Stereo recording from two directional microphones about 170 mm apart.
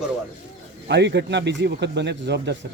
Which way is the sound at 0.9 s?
90° right.